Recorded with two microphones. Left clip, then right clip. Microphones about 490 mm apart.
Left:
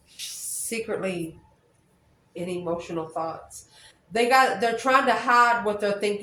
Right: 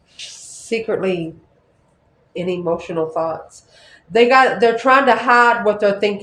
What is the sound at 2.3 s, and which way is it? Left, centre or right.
Speech, centre.